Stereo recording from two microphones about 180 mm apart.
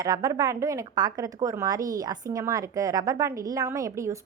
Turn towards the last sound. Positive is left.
turn(degrees=-15)  # may be behind; listen again after turning